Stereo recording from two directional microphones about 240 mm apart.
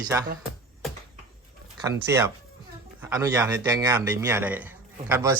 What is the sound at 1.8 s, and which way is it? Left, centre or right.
A man's voice, centre.